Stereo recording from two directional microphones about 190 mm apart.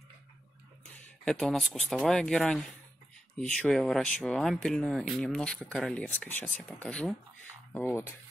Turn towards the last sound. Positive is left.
turn(degrees=10)  # may be behind; listen again after turning